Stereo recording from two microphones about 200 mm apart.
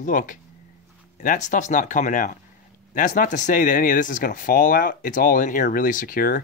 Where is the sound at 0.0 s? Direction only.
40° left (ahead or behind).